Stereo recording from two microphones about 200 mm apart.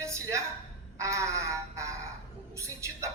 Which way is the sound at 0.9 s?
15° right (ahead or behind).